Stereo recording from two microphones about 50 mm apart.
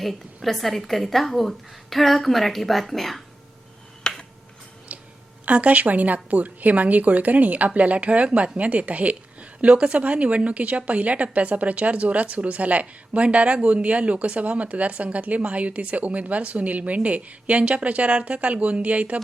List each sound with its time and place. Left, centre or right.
0.4 s a woman's voice: centre
4.1 s tick-tock: centre
4.9 s a sound: right
5.5 s a woman's voice: right